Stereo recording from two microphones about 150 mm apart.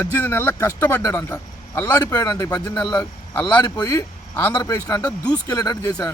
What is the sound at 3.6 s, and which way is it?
Speech, 25° left (ahead or behind).